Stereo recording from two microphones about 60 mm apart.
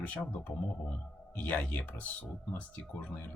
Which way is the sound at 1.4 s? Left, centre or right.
Left.